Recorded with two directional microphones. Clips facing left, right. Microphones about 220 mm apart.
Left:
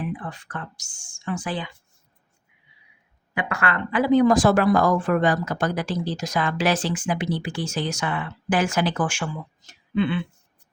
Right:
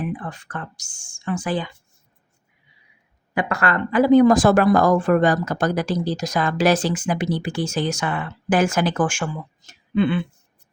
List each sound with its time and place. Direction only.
0.3 s speech: 45° right (ahead or behind)
3.3 s speech: 40° right (ahead or behind)